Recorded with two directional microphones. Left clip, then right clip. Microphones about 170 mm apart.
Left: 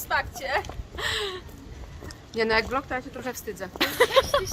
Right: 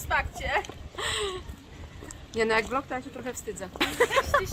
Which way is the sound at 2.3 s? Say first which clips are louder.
Left 2 dB; 15° right (ahead or behind).